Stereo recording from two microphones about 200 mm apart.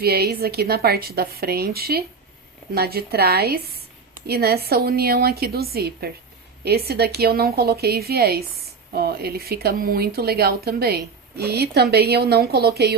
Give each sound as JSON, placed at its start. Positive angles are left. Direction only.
{"t": 0.0, "sound": "speech", "side_deg": -50}